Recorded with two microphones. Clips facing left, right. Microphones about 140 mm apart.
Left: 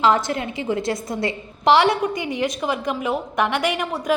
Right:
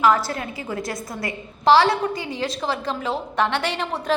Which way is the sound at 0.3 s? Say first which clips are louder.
Left 5 dB; 20° left (ahead or behind).